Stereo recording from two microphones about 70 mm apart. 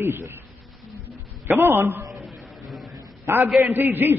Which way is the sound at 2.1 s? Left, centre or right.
Centre.